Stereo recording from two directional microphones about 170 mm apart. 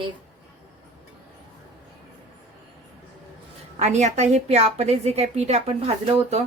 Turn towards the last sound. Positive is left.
turn(degrees=-40)  # may be behind; listen again after turning